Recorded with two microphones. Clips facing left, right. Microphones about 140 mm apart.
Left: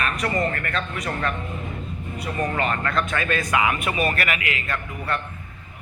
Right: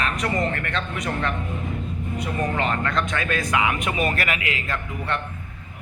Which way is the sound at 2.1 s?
20° right (ahead or behind).